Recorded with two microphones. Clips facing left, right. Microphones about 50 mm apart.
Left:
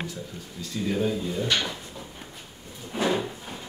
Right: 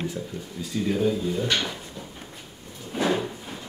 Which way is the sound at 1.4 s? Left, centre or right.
Centre.